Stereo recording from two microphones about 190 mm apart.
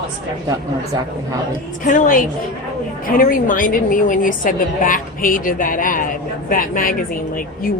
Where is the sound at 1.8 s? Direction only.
45° left (ahead or behind).